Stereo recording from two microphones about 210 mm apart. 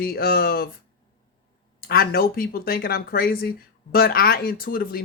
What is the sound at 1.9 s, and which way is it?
Speech, 45° left (ahead or behind).